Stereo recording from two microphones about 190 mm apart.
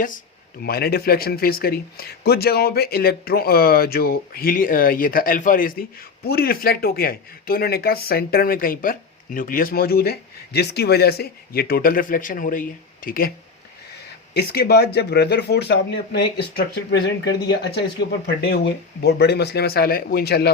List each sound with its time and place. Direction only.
0.6 s speech: 55° left (ahead or behind)
14.3 s speech: 55° left (ahead or behind)